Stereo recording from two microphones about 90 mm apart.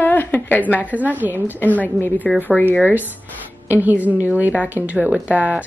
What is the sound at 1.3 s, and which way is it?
Speech, 20° left (ahead or behind).